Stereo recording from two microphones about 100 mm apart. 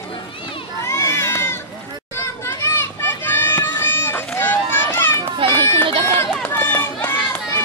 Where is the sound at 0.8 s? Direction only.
30° left (ahead or behind).